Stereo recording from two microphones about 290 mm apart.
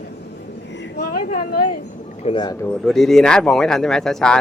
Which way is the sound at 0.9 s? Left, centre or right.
Left.